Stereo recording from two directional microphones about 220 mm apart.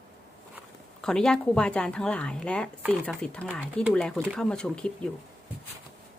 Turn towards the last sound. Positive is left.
turn(degrees=5)  # may be behind; listen again after turning